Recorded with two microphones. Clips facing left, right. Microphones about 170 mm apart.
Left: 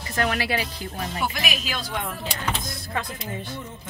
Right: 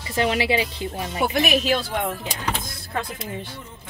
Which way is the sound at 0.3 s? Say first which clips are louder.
Right 4 dB; 20° right (ahead or behind).